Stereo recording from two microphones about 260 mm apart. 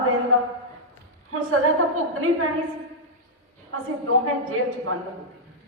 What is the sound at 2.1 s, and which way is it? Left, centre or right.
Speech, right.